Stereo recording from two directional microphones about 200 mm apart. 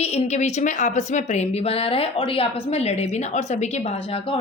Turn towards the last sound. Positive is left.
turn(degrees=30)  # may be behind; listen again after turning